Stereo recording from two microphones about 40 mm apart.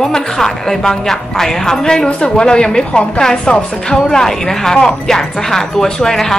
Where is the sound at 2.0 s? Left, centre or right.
Left.